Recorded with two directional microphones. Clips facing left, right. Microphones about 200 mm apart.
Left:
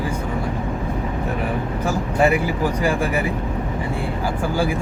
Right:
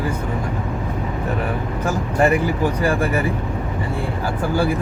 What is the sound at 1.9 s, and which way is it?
Speech, 10° left (ahead or behind).